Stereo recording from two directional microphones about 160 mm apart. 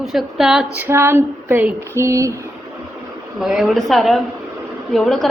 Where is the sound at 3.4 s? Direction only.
Centre (ahead or behind).